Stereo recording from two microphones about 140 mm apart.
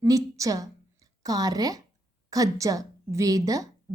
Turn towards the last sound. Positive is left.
turn(degrees=-25)  # may be behind; listen again after turning